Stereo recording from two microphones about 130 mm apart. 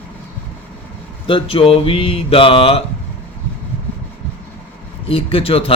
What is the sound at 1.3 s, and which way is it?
Speech, 45° left (ahead or behind).